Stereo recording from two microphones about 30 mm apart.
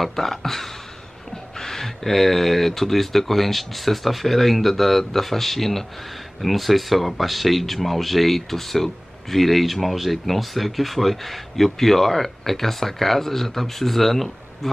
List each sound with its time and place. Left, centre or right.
0.0 s speech: centre